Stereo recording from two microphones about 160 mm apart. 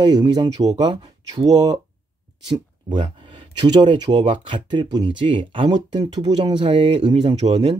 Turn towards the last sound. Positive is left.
turn(degrees=-35)  # may be behind; listen again after turning